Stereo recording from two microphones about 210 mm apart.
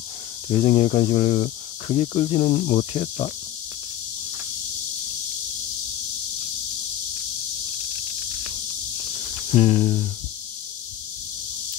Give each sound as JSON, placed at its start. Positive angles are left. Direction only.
{"t": 0.5, "sound": "speech", "side_deg": 30}
{"t": 9.5, "sound": "speech", "side_deg": 30}